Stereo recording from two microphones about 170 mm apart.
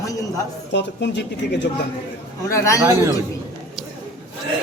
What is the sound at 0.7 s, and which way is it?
Speech, 90° left.